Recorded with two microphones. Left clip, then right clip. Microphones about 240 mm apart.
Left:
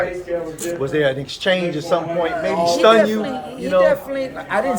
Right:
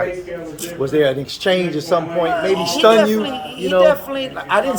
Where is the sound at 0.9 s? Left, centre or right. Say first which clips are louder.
Right 4 dB; right.